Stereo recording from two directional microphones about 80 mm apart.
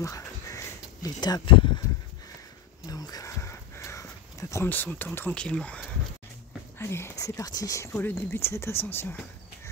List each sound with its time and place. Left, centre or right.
0.0 s a sound: left
1.0 s speech: left
1.4 s speech: left
2.9 s a sound: left
3.3 s a sound: left
4.6 s speech: left
5.3 s speech: centre
6.8 s speech: left
7.2 s speech: left
7.8 s speech: left